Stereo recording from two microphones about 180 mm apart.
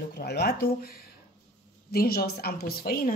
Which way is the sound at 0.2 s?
60° left (ahead or behind).